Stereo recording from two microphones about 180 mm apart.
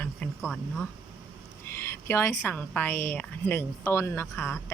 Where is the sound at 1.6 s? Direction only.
15° left (ahead or behind).